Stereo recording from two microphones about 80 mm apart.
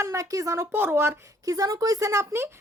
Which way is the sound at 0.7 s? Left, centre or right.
Right.